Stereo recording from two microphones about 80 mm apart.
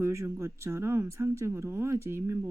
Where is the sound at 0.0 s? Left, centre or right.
Right.